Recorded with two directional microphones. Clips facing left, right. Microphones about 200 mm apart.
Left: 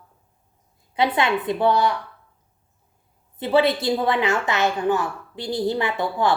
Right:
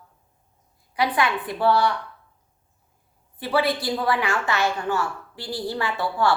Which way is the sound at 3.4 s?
25° left (ahead or behind).